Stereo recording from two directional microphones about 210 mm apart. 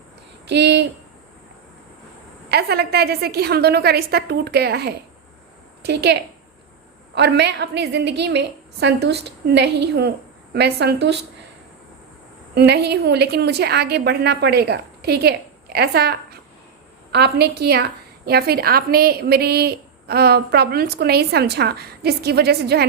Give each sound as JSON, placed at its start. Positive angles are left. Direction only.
{"t": 0.4, "sound": "a woman's voice", "side_deg": -55}
{"t": 2.5, "sound": "a woman's voice", "side_deg": -50}
{"t": 7.2, "sound": "a woman's voice", "side_deg": -55}
{"t": 12.5, "sound": "a woman's voice", "side_deg": -50}